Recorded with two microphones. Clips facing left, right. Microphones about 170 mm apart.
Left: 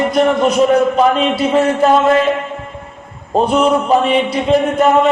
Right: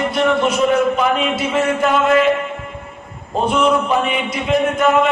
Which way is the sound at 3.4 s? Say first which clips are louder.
Left 2 dB; 35° left (ahead or behind).